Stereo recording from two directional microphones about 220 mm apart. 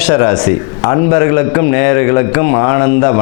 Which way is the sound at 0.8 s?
20° left (ahead or behind).